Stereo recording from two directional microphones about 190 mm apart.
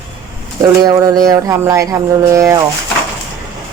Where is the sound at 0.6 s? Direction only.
20° right (ahead or behind).